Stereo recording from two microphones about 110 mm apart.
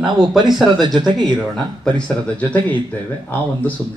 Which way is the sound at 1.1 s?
45° right (ahead or behind).